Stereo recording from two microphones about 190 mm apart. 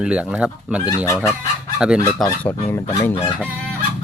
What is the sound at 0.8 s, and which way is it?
Speech, 20° left (ahead or behind).